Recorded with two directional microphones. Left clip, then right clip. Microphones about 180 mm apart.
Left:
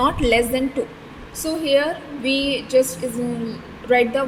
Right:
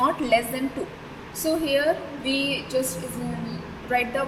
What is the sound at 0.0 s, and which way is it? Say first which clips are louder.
Speech: left 4 dB; 60° left (ahead or behind).